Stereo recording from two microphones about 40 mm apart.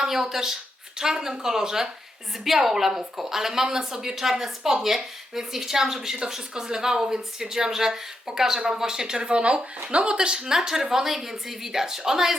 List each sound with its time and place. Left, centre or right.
0.0 s speech: centre